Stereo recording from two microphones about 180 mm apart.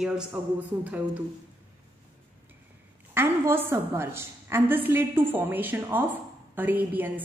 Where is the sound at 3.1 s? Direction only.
10° right (ahead or behind).